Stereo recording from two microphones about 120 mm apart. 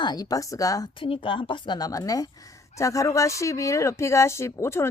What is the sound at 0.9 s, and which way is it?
Speech, 45° left (ahead or behind).